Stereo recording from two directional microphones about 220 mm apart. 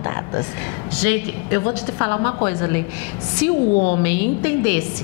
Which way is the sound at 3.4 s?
10° left (ahead or behind).